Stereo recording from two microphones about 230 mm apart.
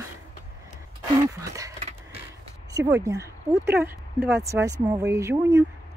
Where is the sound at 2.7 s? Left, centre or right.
Centre.